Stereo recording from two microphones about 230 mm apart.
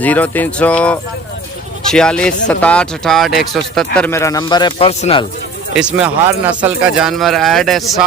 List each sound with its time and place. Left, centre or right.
0.0 s speech: centre; by 5.2 s left
5.7 s speech: centre